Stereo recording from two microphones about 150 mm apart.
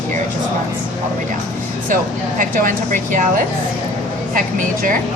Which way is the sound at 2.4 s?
65° right (ahead or behind).